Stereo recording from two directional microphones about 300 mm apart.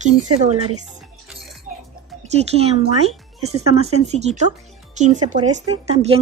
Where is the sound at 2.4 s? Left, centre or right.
Centre.